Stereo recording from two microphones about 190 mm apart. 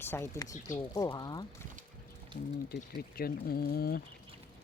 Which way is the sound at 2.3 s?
55° left (ahead or behind).